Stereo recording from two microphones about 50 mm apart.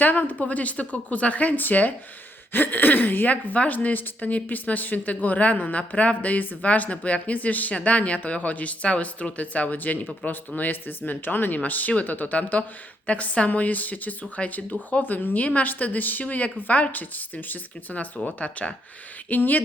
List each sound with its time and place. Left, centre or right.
0.0 s a woman's voice: left